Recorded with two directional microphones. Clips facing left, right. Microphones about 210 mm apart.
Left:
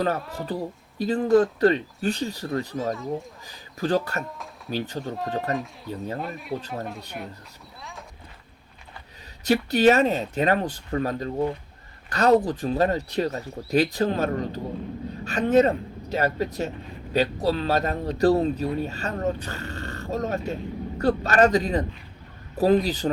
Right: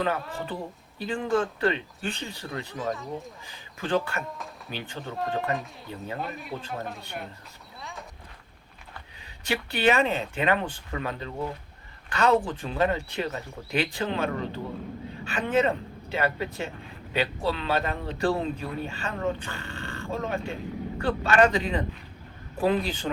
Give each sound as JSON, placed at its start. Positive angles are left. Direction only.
{"t": 0.3, "sound": "speech", "side_deg": 40}
{"t": 2.7, "sound": "speech", "side_deg": 0}
{"t": 3.8, "sound": "speech", "side_deg": 40}
{"t": 5.0, "sound": "speech", "side_deg": 0}
{"t": 9.4, "sound": "speech", "side_deg": 40}